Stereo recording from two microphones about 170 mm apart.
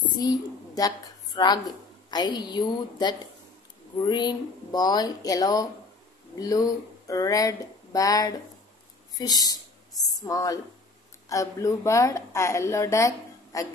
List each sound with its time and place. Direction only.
0.1 s a woman's voice: 25° left (ahead or behind)